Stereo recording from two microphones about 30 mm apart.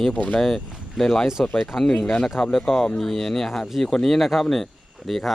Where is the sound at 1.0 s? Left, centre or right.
Centre.